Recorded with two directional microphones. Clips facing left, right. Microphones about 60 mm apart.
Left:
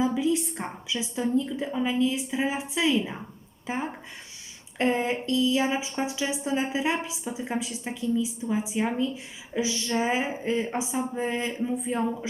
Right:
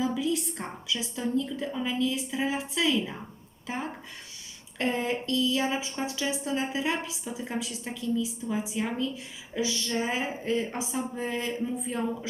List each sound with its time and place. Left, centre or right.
0.0 s a woman's voice: left